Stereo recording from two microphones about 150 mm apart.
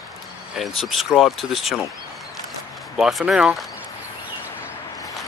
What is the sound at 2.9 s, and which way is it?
Speech, 5° right (ahead or behind).